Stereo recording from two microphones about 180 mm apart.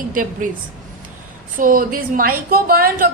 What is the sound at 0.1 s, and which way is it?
Speech, 50° right (ahead or behind).